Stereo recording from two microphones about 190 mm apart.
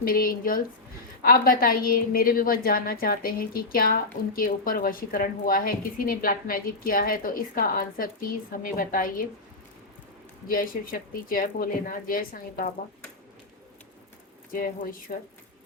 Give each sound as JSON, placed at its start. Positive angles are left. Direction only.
{"t": 0.0, "sound": "a woman's voice", "side_deg": 50}
{"t": 10.5, "sound": "a woman's voice", "side_deg": 50}
{"t": 14.5, "sound": "a woman's voice", "side_deg": 50}